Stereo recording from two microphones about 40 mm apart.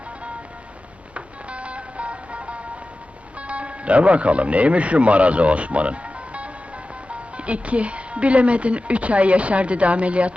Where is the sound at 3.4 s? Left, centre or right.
Right.